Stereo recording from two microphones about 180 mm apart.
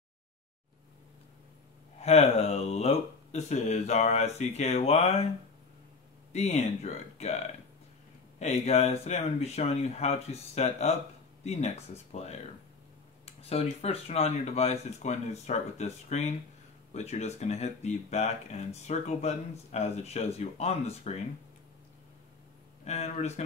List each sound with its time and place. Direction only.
2.0 s speech: 35° left (ahead or behind)
6.3 s speech: 35° left (ahead or behind)
8.4 s speech: 40° left (ahead or behind)
22.8 s speech: 35° left (ahead or behind)